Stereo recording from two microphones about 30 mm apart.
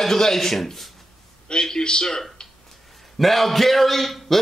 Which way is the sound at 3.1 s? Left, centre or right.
Centre.